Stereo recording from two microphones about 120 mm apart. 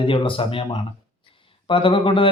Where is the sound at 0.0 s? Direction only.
45° left (ahead or behind).